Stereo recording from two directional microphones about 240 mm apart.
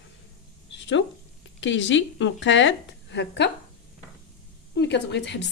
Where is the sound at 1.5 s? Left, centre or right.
Left.